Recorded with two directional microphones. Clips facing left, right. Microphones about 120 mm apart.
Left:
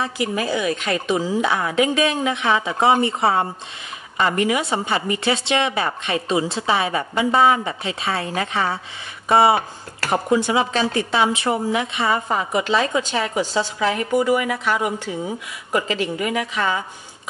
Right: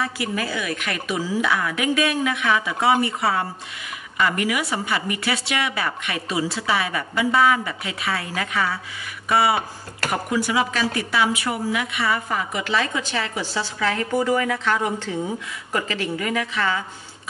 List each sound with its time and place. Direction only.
0.0 s speech: 20° left (ahead or behind)